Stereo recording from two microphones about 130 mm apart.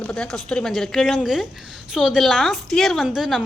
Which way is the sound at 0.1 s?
5° left (ahead or behind).